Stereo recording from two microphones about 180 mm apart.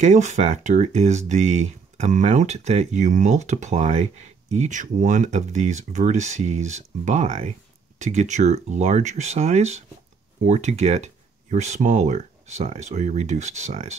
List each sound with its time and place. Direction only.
0.0 s speech: 40° right (ahead or behind)